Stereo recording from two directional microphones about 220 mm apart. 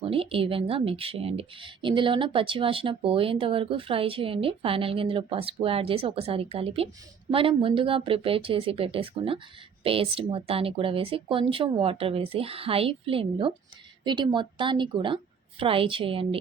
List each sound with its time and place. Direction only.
0.0 s speech: 25° right (ahead or behind)